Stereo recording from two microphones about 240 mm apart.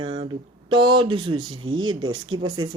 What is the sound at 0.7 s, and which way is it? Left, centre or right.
Speech, centre.